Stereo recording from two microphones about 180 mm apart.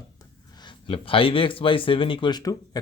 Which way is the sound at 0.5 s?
25° left (ahead or behind).